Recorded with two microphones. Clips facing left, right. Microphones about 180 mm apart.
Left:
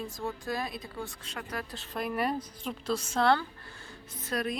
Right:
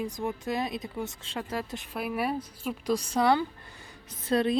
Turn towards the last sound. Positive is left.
turn(degrees=-30)  # may be behind; listen again after turning